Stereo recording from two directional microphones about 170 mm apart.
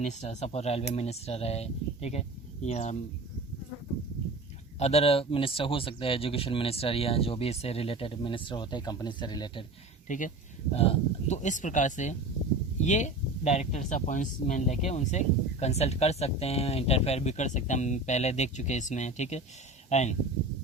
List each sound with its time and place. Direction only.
0.0 s speech: 45° left (ahead or behind)
4.8 s speech: 35° left (ahead or behind)
10.1 s speech: 50° left (ahead or behind)
10.8 s speech: 40° left (ahead or behind)